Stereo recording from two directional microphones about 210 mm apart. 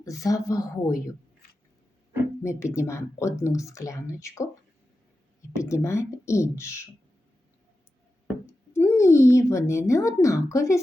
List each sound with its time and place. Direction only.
0.0 s speech: 15° left (ahead or behind)
2.4 s speech: 15° left (ahead or behind)
5.5 s speech: 15° left (ahead or behind)
8.4 s speech: 10° left (ahead or behind)